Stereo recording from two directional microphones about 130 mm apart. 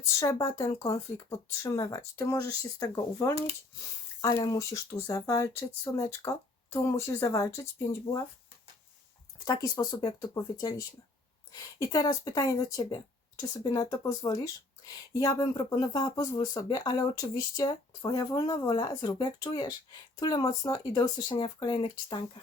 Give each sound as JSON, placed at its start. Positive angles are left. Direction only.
{"t": 0.2, "sound": "speech", "side_deg": 25}
{"t": 9.4, "sound": "speech", "side_deg": 30}